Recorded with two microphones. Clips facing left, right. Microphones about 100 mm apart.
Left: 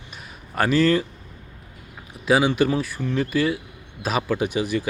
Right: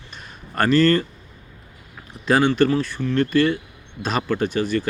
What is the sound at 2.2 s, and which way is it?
Speech, 5° left (ahead or behind).